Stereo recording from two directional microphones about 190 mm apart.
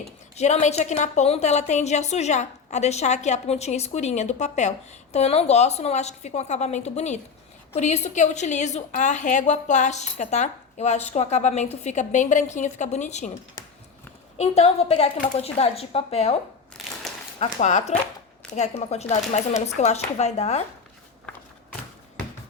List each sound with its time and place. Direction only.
0.3 s a woman's voice: 35° left (ahead or behind)
14.3 s a woman's voice: 35° left (ahead or behind)
16.8 s a sound: centre (ahead or behind)
17.4 s a woman's voice: 40° left (ahead or behind)